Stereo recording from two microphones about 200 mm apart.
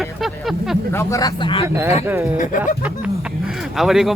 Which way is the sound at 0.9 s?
15° left (ahead or behind).